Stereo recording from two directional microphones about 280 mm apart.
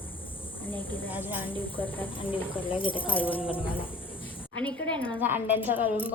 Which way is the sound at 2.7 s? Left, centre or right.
Centre.